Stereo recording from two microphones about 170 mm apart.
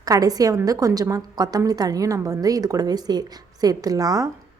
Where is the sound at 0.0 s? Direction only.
20° right (ahead or behind).